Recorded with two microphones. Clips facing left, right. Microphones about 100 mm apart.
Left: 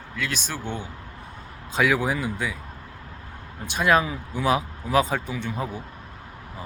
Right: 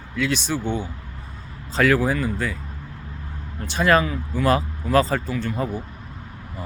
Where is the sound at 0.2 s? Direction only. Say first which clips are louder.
Right 7 dB; centre (ahead or behind).